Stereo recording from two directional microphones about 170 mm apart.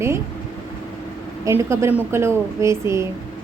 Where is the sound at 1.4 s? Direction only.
15° right (ahead or behind).